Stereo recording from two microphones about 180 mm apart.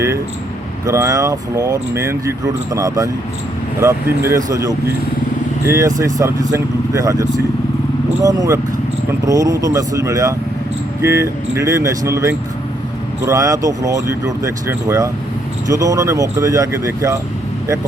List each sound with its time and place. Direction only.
0.9 s speech: 20° right (ahead or behind)